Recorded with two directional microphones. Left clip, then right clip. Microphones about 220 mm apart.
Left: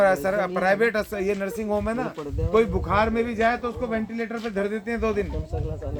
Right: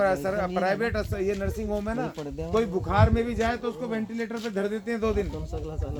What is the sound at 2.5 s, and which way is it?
A man's voice, 20° left (ahead or behind).